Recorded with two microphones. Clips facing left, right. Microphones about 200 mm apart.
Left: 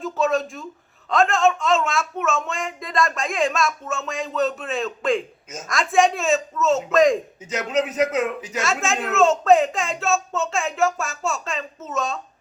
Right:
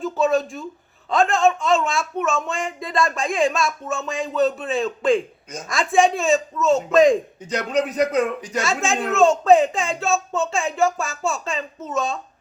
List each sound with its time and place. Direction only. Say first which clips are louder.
0.0 s speech: right 2 dB; centre (ahead or behind)